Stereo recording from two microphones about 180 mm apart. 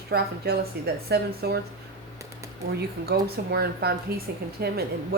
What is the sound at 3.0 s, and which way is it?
A woman's voice, 60° right (ahead or behind).